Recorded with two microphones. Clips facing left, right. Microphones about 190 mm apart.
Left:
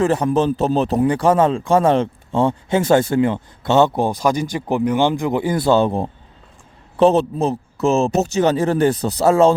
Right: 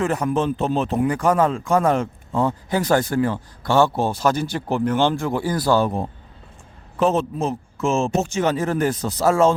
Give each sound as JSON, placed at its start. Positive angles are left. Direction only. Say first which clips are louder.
{"t": 0.0, "sound": "a man's voice", "louder": "left 4 dB", "side_deg": 30}